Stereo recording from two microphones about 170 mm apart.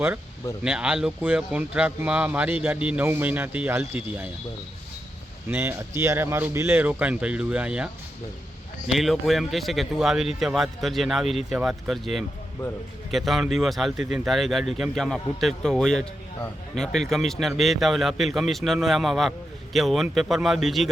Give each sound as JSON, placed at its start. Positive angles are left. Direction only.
{"t": 0.6, "sound": "speech", "side_deg": -5}
{"t": 5.5, "sound": "speech", "side_deg": -15}
{"t": 8.9, "sound": "speech", "side_deg": 0}